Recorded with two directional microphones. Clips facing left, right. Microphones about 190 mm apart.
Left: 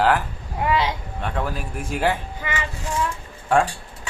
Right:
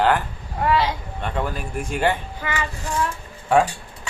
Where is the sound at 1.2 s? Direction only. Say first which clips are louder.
Right 1 dB; centre (ahead or behind).